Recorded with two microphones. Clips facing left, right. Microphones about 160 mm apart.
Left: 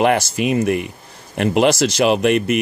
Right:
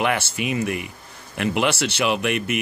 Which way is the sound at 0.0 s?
35° left (ahead or behind).